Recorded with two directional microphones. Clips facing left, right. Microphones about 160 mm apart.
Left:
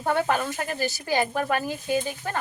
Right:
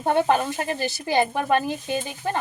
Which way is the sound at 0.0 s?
20° right (ahead or behind).